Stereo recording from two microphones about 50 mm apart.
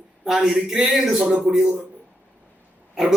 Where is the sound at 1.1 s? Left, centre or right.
Centre.